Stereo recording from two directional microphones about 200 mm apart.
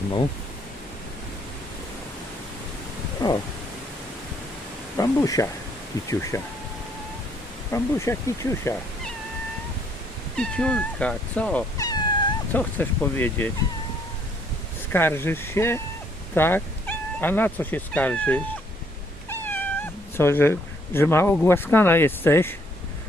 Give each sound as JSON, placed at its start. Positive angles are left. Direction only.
{"t": 4.9, "sound": "speech", "side_deg": 15}
{"t": 7.7, "sound": "speech", "side_deg": 15}
{"t": 10.3, "sound": "speech", "side_deg": 5}
{"t": 11.8, "sound": "cat", "side_deg": 20}
{"t": 12.5, "sound": "speech", "side_deg": 10}
{"t": 14.9, "sound": "speech", "side_deg": 10}